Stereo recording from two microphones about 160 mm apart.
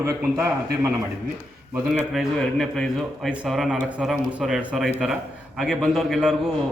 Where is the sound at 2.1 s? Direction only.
Centre (ahead or behind).